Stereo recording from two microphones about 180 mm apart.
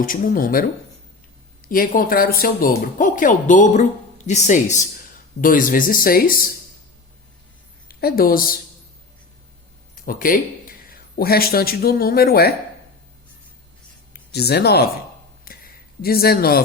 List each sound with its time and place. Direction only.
0.0 s speech: 50° left (ahead or behind)
1.6 s speech: 50° left (ahead or behind)
7.9 s a woman's voice: 55° left (ahead or behind)
9.9 s speech: 50° left (ahead or behind)
14.1 s speech: 65° left (ahead or behind)
16.0 s speech: 60° left (ahead or behind)